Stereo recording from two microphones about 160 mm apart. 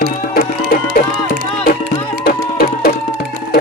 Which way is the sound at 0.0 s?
70° left (ahead or behind).